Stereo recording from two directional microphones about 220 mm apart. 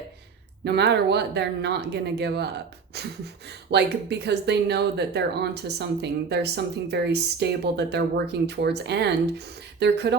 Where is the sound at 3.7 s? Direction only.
50° right (ahead or behind).